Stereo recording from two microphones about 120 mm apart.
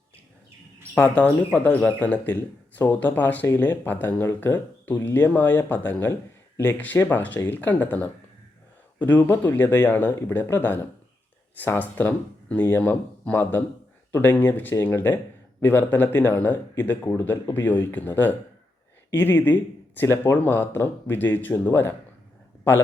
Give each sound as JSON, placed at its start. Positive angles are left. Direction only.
{"t": 0.9, "sound": "speech", "side_deg": 10}